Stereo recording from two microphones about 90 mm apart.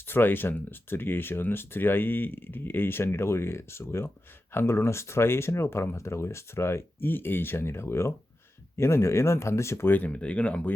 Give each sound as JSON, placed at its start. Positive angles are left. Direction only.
{"t": 0.0, "sound": "speech", "side_deg": 25}